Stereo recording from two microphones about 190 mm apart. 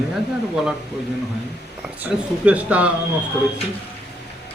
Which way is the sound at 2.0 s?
10° right (ahead or behind).